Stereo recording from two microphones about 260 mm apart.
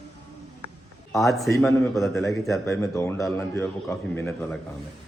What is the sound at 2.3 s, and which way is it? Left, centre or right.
A man's voice, centre.